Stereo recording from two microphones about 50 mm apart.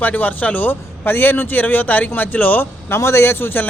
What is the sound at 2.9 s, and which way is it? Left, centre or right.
Speech, left.